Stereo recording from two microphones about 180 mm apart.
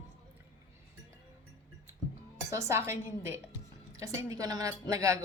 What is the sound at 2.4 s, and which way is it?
A woman's voice, 15° right (ahead or behind).